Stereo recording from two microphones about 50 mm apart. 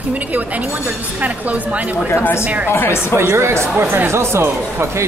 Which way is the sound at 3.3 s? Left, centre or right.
Right.